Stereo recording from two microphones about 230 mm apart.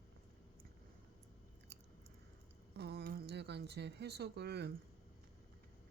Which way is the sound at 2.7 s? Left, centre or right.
Right.